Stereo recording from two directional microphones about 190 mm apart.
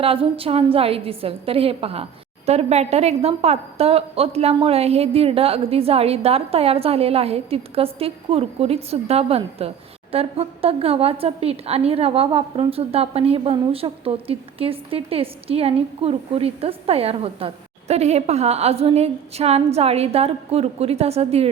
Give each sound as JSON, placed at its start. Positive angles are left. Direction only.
{"t": 0.0, "sound": "a woman's voice", "side_deg": -30}